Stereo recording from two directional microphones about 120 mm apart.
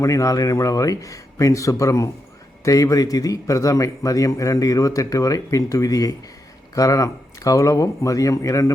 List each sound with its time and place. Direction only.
0.0 s a man's voice: 25° left (ahead or behind)